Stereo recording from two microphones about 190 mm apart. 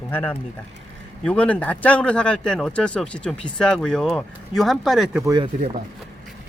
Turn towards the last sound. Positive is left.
turn(degrees=-20)  # may be behind; listen again after turning